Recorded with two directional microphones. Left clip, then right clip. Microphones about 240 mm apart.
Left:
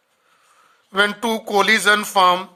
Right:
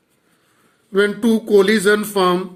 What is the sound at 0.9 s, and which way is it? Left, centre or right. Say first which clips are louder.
A woman's voice: right 2 dB; left.